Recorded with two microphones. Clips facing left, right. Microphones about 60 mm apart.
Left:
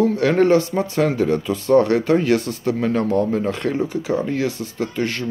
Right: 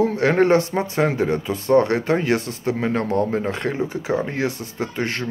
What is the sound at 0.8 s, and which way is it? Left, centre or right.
Speech, centre.